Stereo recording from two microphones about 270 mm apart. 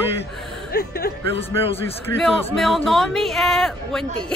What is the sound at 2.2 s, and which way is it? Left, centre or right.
Speech, centre.